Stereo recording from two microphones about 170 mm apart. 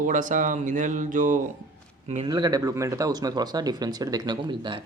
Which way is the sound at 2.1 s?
25° right (ahead or behind).